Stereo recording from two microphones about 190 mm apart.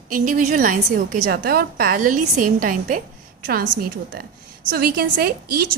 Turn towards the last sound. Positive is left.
turn(degrees=-55)  # may be behind; listen again after turning